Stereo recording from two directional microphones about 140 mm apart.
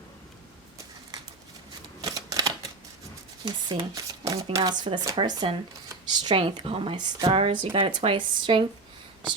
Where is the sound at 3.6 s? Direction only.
25° right (ahead or behind).